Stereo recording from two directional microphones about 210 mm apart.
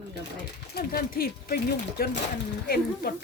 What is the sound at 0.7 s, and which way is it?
Speech, 45° left (ahead or behind).